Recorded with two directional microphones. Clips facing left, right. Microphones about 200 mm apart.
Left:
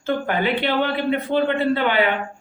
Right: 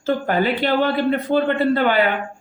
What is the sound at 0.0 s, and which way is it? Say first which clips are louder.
Speech: right 2 dB; 40° right (ahead or behind).